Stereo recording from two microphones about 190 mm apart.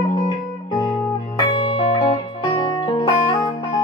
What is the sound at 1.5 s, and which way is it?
Music, 30° left (ahead or behind).